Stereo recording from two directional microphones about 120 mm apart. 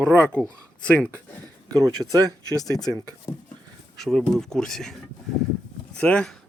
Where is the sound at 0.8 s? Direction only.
10° left (ahead or behind).